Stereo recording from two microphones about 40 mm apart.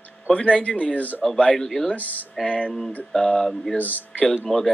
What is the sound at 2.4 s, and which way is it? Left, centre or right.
Speech, left.